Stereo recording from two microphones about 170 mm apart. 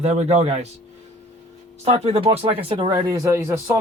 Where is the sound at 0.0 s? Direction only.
40° right (ahead or behind).